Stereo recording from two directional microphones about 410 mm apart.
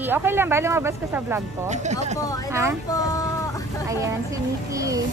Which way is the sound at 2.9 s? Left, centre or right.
Centre.